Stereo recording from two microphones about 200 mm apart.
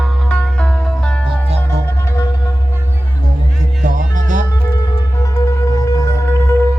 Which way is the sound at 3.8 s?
40° right (ahead or behind).